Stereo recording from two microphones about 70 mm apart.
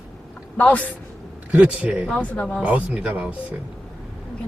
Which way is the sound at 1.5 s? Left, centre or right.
Centre.